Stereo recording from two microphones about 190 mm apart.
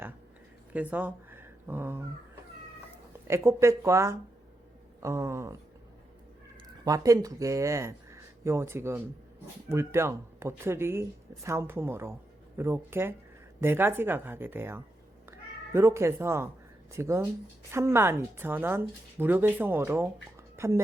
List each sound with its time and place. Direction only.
0.7 s speech: 10° right (ahead or behind)
3.2 s speech: 15° right (ahead or behind)
6.8 s speech: 20° right (ahead or behind)